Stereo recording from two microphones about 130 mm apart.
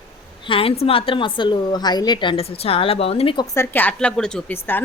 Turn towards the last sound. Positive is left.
turn(degrees=15)  # may be behind; listen again after turning